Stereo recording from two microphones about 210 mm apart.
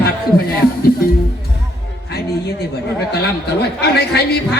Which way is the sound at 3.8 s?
50° left (ahead or behind).